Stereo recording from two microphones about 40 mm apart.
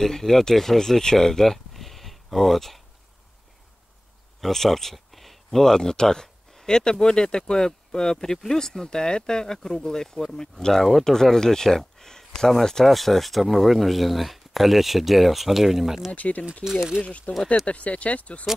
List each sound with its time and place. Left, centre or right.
0.0 s speech: centre
4.4 s speech: centre
16.1 s speech: left
16.6 s speech: centre
17.3 s speech: left